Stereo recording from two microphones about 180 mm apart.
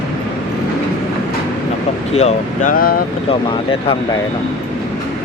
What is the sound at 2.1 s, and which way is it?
Speech, 40° left (ahead or behind).